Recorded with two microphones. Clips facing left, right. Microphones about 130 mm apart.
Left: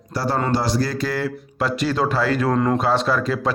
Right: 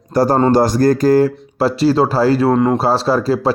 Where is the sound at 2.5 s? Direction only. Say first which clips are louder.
Right 6 dB; 20° right (ahead or behind).